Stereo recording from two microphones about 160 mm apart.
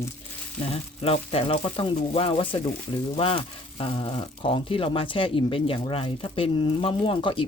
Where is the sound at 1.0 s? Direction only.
35° left (ahead or behind).